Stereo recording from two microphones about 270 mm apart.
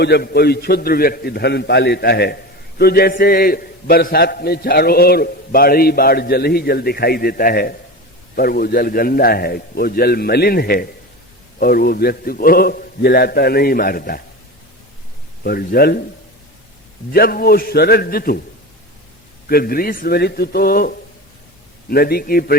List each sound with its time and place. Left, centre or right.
0.0 s a man's voice: left
15.4 s a man's voice: left
17.1 s a man's voice: left
19.5 s a man's voice: left